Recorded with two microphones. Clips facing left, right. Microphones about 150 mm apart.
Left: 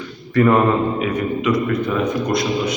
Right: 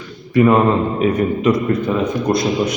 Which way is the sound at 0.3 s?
15° right (ahead or behind).